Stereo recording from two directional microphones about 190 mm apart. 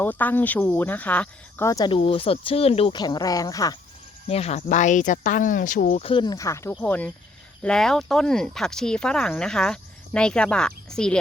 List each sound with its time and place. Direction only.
0.0 s speech: 10° left (ahead or behind)
4.3 s speech: 35° left (ahead or behind); by 11.2 s 5° left (ahead or behind)